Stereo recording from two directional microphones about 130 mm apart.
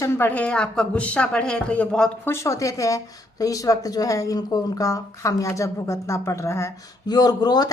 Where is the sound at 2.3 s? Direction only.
25° left (ahead or behind).